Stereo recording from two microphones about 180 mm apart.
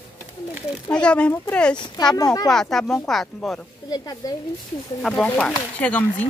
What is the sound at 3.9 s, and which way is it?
Speech, 20° left (ahead or behind).